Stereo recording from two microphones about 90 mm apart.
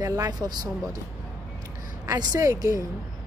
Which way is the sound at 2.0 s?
40° right (ahead or behind).